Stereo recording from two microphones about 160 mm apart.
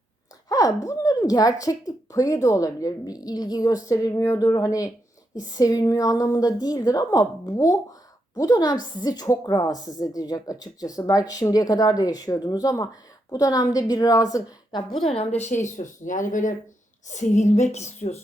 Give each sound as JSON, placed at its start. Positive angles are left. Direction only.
{"t": 0.4, "sound": "a woman's voice", "side_deg": 20}
{"t": 15.1, "sound": "a woman's voice", "side_deg": 40}